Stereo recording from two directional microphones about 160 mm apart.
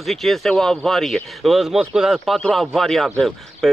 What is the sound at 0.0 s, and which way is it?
Speech, centre (ahead or behind).